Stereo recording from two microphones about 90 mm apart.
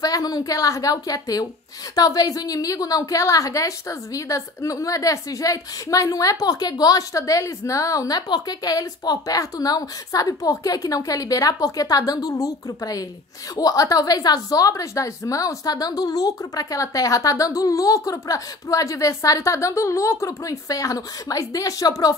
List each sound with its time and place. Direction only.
0.0 s a woman's voice: 45° left (ahead or behind)